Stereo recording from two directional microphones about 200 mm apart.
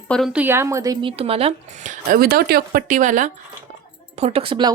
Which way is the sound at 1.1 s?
30° right (ahead or behind).